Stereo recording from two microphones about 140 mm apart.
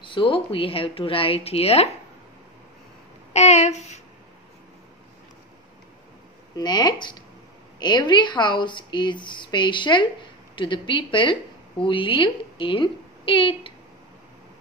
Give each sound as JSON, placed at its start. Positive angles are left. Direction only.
{"t": 0.0, "sound": "speech", "side_deg": 35}
{"t": 3.3, "sound": "speech", "side_deg": 55}
{"t": 6.5, "sound": "a woman's voice", "side_deg": 30}